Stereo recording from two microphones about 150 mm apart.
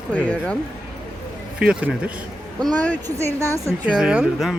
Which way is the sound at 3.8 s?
5° right (ahead or behind).